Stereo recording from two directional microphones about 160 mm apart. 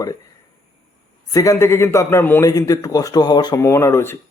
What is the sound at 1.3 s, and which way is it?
A man's voice, 20° left (ahead or behind).